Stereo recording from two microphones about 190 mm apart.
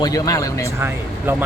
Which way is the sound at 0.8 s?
10° right (ahead or behind).